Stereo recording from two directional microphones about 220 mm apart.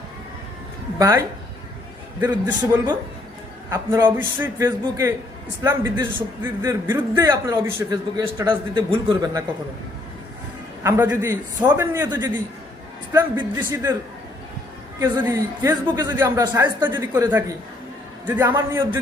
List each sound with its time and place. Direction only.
0.9 s speech: 15° right (ahead or behind)
2.2 s a man's voice: 10° right (ahead or behind)
10.8 s a man's voice: 10° right (ahead or behind)
13.6 s a man's voice: 10° right (ahead or behind)
15.2 s a man's voice: 15° right (ahead or behind)